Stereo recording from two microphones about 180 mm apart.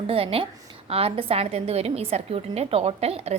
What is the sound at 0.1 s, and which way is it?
A woman's voice, 30° right (ahead or behind).